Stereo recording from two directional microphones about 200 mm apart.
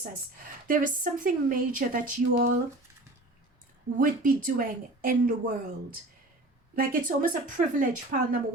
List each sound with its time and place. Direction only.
0.0 s a woman's voice: 45° right (ahead or behind)
3.9 s a woman's voice: 45° right (ahead or behind)
6.7 s a woman's voice: 40° right (ahead or behind)